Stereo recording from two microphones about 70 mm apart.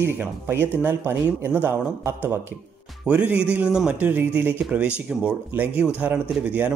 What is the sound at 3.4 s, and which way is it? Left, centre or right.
Speech, centre.